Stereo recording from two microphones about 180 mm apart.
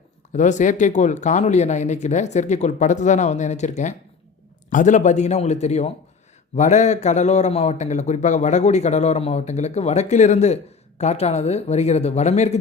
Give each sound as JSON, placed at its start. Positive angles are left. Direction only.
{"t": 0.3, "sound": "a man's voice", "side_deg": 40}